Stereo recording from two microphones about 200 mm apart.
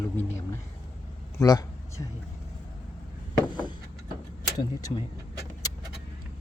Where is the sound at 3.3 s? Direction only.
20° left (ahead or behind).